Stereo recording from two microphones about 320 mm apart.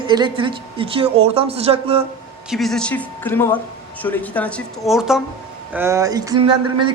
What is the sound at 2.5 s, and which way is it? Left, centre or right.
Speech, centre.